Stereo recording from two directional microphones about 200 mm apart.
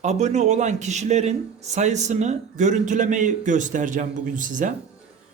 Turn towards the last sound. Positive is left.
turn(degrees=-40)  # may be behind; listen again after turning